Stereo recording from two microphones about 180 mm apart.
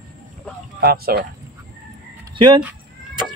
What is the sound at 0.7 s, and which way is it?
Speech, 60° right (ahead or behind).